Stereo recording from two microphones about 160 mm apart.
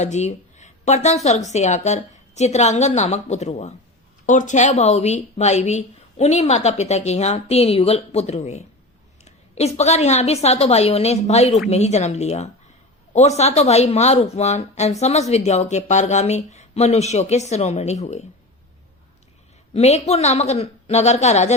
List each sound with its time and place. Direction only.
0.0 s a woman's voice: 45° left (ahead or behind)
19.7 s speech: 40° left (ahead or behind)